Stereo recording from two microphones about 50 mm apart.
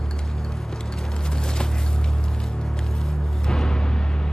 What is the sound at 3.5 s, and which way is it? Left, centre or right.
Music, centre.